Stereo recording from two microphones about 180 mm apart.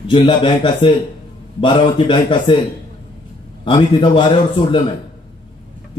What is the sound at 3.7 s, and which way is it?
A man's voice, 30° left (ahead or behind).